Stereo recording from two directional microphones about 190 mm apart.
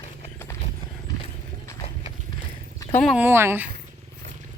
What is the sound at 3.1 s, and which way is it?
Speech, 10° right (ahead or behind).